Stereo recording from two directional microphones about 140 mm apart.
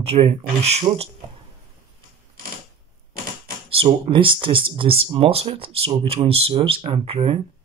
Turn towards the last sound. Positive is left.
turn(degrees=-40)  # may be behind; listen again after turning